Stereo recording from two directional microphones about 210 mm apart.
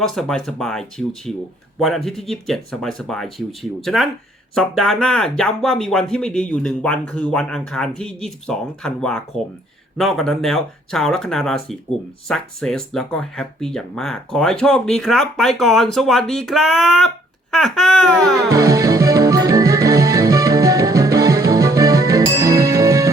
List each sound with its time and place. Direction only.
0.0 s speech: centre (ahead or behind)
18.4 s music: 15° right (ahead or behind)